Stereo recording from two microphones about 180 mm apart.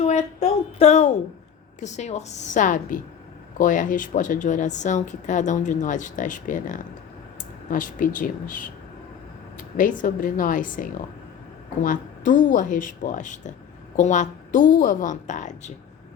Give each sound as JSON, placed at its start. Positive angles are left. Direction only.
{"t": 0.0, "sound": "a woman's voice", "side_deg": 40}